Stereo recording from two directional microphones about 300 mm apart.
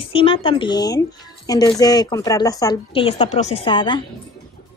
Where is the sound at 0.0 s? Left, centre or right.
Centre.